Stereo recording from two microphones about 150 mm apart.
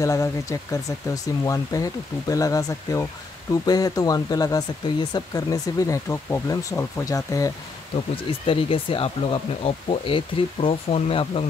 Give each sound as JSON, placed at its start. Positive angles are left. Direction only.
{"t": 0.0, "sound": "speech", "side_deg": 20}
{"t": 8.5, "sound": "speech", "side_deg": 35}